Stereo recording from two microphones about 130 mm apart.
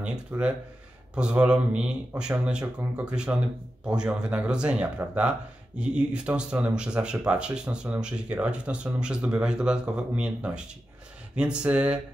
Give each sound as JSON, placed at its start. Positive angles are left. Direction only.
{"t": 0.0, "sound": "speech", "side_deg": -10}